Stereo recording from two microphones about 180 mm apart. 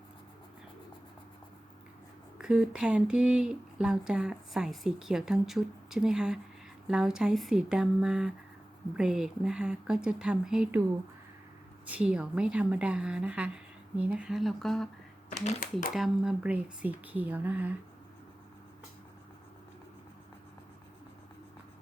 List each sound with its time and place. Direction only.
2.4 s speech: 5° right (ahead or behind)
11.9 s speech: 5° right (ahead or behind)
15.3 s speech: 45° left (ahead or behind)
16.0 s speech: 5° right (ahead or behind)